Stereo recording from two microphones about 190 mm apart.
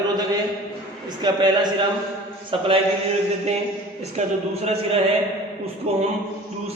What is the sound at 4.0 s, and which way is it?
A man's voice, 35° right (ahead or behind).